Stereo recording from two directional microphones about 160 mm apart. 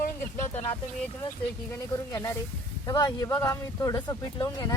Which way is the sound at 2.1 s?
20° left (ahead or behind).